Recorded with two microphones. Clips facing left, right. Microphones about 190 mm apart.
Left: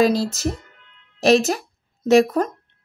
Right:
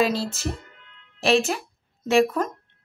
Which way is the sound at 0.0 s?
40° left (ahead or behind).